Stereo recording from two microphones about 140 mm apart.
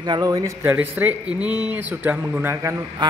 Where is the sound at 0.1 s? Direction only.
25° right (ahead or behind).